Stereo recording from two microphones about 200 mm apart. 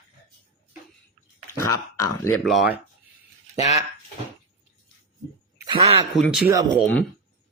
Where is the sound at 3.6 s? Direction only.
35° left (ahead or behind).